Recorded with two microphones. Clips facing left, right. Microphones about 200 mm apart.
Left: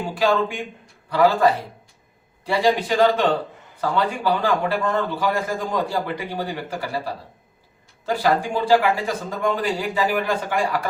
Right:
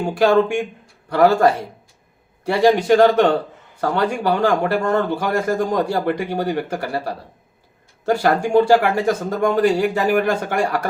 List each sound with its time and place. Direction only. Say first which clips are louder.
0.1 s speech: right 6 dB; 65° right (ahead or behind)
1.1 s a man's voice: right 3 dB; 50° right (ahead or behind)
2.5 s a man's voice: right 6 dB; 55° right (ahead or behind)